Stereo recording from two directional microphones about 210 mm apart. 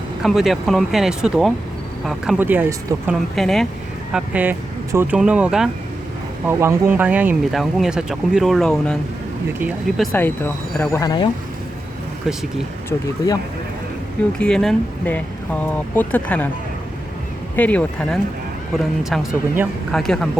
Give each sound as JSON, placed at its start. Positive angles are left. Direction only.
{"t": 0.2, "sound": "speech", "side_deg": 0}
{"t": 10.1, "sound": "speech", "side_deg": 10}
{"t": 14.3, "sound": "speech", "side_deg": 5}
{"t": 17.6, "sound": "speech", "side_deg": 5}